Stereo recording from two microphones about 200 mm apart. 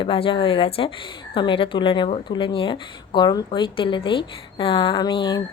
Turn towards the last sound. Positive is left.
turn(degrees=20)  # may be behind; listen again after turning